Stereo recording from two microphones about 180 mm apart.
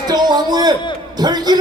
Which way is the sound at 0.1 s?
25° right (ahead or behind).